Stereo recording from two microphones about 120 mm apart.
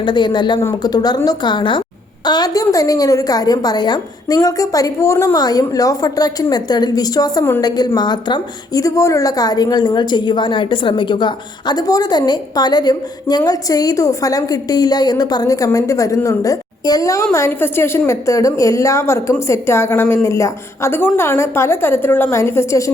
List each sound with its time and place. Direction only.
0.0 s a woman's voice: 40° left (ahead or behind); by 22.9 s 25° left (ahead or behind)